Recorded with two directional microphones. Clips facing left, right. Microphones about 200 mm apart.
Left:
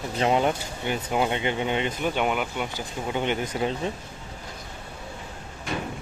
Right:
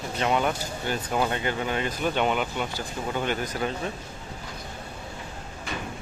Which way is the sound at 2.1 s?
10° left (ahead or behind).